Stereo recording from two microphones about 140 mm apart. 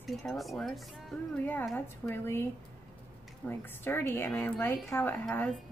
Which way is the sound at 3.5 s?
15° left (ahead or behind).